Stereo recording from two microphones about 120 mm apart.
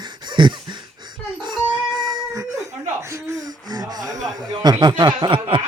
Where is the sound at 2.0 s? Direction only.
35° right (ahead or behind).